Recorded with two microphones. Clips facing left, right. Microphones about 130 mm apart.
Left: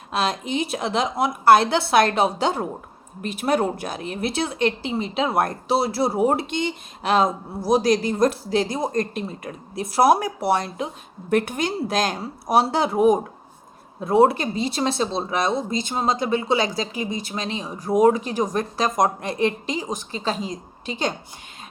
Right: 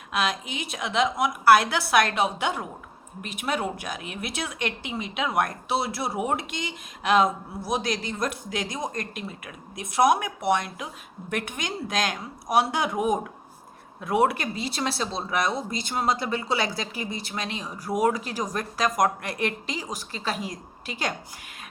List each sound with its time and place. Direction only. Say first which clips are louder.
0.1 s speech: left 4 dB; 30° left (ahead or behind)